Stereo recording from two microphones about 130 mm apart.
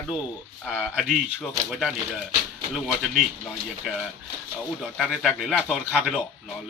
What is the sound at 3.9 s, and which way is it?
A man's voice, 5° right (ahead or behind).